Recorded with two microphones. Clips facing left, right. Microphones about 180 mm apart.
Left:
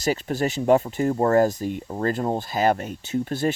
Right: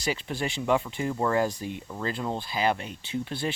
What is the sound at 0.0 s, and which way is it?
Speech, 45° left (ahead or behind).